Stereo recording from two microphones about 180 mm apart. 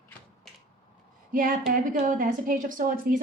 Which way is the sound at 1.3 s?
50° right (ahead or behind).